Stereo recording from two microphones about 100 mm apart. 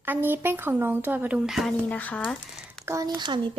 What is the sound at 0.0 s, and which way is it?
A child's voice, 20° right (ahead or behind).